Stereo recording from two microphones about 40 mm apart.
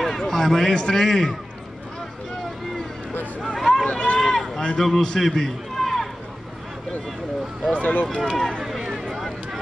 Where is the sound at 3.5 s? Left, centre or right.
Centre.